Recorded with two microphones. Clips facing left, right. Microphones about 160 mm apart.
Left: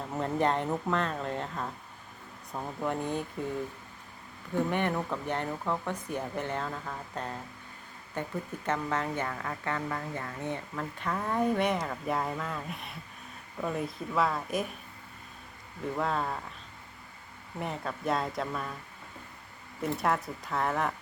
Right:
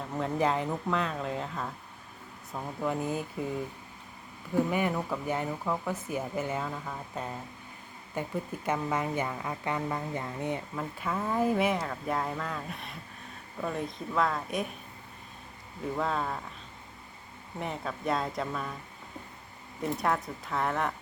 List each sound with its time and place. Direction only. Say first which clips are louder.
0.1 s speech: even; centre (ahead or behind)
4.5 s speech: right 1 dB; 5° right (ahead or behind)
16.0 s speech: even; centre (ahead or behind)
17.6 s speech: even; centre (ahead or behind)
19.8 s speech: even; centre (ahead or behind)